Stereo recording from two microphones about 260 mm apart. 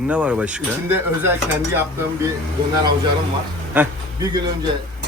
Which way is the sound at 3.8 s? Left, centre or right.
Centre.